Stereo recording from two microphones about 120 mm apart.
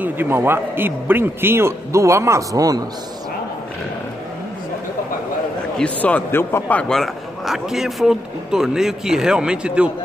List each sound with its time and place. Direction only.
0.0 s a man's voice: 20° right (ahead or behind)
5.8 s a man's voice: 10° left (ahead or behind); by 9.8 s 10° right (ahead or behind)